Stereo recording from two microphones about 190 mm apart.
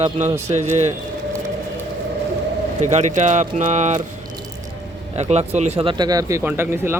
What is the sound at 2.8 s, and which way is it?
Speech, 40° right (ahead or behind).